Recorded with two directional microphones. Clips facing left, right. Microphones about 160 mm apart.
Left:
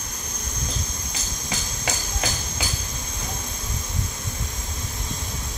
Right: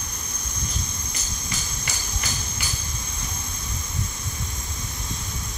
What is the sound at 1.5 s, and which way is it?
Hammer, 90° left.